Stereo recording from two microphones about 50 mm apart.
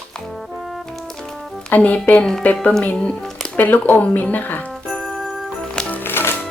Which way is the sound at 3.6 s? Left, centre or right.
Left.